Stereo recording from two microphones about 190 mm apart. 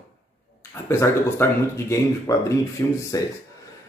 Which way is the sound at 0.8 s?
15° left (ahead or behind).